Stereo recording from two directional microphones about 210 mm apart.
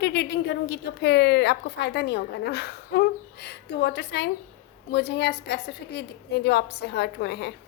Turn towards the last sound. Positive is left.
turn(degrees=55)  # may be behind; listen again after turning